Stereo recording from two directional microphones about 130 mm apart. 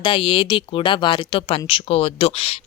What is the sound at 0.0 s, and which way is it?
Speech, 40° left (ahead or behind).